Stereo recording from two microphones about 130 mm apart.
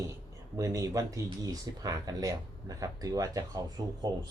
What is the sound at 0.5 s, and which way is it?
Speech, 25° right (ahead or behind).